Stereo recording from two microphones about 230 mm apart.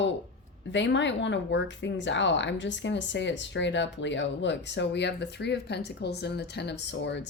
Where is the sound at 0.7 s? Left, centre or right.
Left.